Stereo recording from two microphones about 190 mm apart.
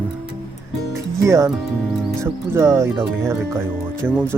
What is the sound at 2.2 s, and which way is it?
Speech, 15° right (ahead or behind).